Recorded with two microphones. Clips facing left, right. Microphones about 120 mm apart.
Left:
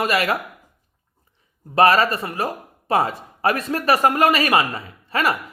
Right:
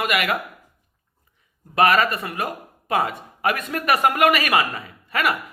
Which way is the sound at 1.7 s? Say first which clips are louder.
Left 2 dB; 30° left (ahead or behind).